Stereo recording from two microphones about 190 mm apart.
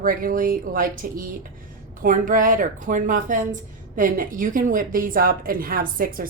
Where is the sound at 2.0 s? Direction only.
45° right (ahead or behind).